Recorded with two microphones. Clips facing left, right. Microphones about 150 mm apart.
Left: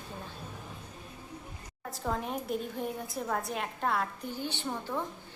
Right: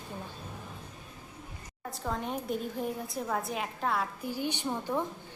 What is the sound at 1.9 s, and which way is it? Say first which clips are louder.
A woman's voice: left 1 dB; centre (ahead or behind).